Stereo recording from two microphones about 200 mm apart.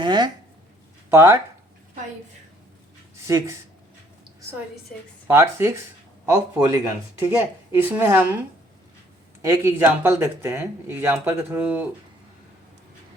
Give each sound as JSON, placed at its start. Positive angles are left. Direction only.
{"t": 0.0, "sound": "speech", "side_deg": -20}
{"t": 3.2, "sound": "speech", "side_deg": -15}
{"t": 5.3, "sound": "speech", "side_deg": -15}
{"t": 9.4, "sound": "speech", "side_deg": -15}